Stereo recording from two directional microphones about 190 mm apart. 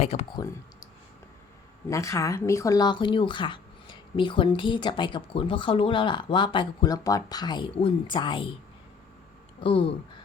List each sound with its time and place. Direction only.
0.0 s speech: 35° left (ahead or behind)
1.9 s speech: 15° left (ahead or behind)
9.6 s speech: 30° left (ahead or behind)